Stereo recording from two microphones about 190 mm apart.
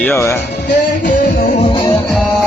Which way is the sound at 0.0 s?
15° left (ahead or behind).